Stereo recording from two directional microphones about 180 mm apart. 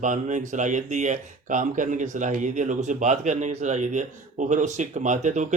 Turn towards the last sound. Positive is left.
turn(degrees=-40)  # may be behind; listen again after turning